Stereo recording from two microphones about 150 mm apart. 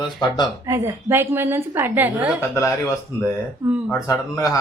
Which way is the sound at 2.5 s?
20° left (ahead or behind).